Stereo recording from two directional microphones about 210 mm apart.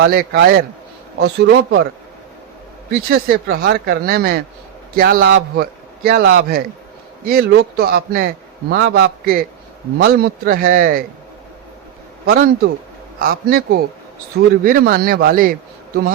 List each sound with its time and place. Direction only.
0.0 s speech: 45° right (ahead or behind)
3.1 s speech: 45° right (ahead or behind)
12.2 s a man's voice: 45° right (ahead or behind)